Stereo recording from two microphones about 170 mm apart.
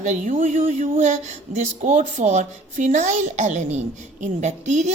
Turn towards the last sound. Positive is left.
turn(degrees=-45)  # may be behind; listen again after turning